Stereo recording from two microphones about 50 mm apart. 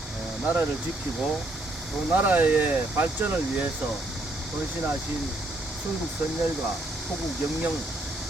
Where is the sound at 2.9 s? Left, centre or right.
Right.